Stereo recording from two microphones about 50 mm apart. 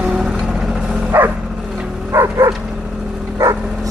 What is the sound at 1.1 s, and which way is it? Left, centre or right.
Bow-wow, right.